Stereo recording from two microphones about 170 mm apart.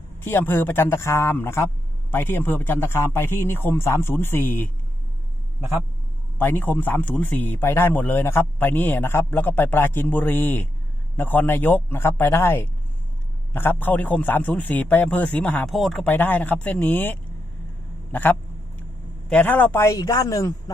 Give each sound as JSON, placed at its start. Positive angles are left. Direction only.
{"t": 0.2, "sound": "a man's voice", "side_deg": 10}
{"t": 6.4, "sound": "a man's voice", "side_deg": 10}